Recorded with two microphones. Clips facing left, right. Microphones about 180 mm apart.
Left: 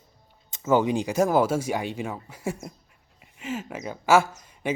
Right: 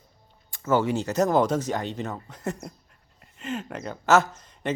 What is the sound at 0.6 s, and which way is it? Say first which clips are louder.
Speech: left 1 dB; 15° left (ahead or behind).